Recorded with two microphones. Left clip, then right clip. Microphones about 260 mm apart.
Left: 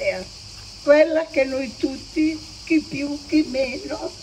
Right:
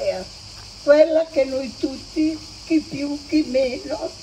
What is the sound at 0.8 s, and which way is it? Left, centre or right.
Speech, left.